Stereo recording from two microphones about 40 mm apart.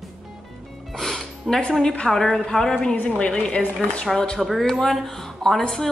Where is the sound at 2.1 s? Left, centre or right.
Centre.